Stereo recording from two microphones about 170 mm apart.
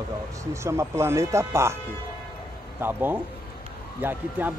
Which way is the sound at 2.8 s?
10° right (ahead or behind).